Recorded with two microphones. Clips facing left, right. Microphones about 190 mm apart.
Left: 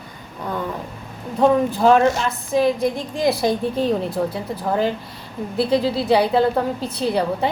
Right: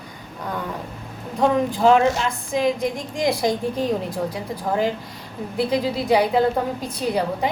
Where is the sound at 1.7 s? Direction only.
15° right (ahead or behind).